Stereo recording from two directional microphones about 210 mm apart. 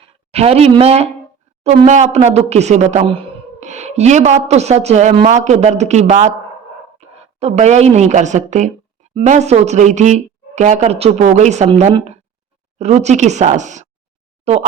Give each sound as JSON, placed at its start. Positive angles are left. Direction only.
{"t": 0.0, "sound": "speech", "side_deg": -30}